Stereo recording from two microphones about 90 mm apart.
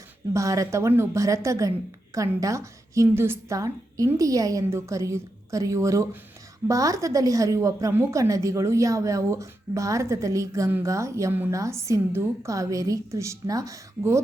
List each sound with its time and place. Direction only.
0.3 s a woman's voice: 35° right (ahead or behind)